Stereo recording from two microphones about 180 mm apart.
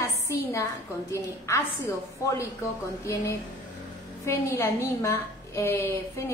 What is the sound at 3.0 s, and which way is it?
A woman's voice, 15° left (ahead or behind).